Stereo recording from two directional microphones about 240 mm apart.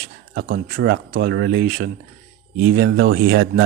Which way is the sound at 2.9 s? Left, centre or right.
Right.